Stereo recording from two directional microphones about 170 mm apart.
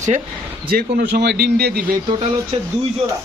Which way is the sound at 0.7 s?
60° right (ahead or behind).